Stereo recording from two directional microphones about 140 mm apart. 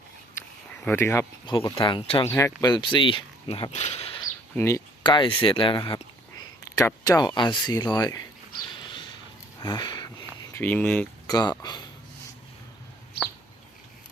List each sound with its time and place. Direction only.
0.9 s speech: 15° left (ahead or behind)
1.5 s speech: 35° left (ahead or behind)
2.2 s speech: 20° left (ahead or behind); by 3.7 s 40° left (ahead or behind)
3.7 s speech: 55° left (ahead or behind)
4.5 s speech: 20° left (ahead or behind)
5.0 s speech: 35° left (ahead or behind)
6.7 s speech: 20° left (ahead or behind)
8.7 s a sound: 35° left (ahead or behind)
10.4 s speech: 15° left (ahead or behind)
11.3 s speech: 30° left (ahead or behind)